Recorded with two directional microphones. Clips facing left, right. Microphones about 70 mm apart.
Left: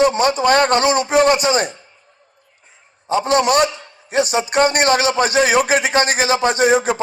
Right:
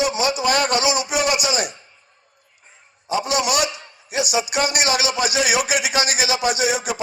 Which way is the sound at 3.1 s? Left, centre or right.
Left.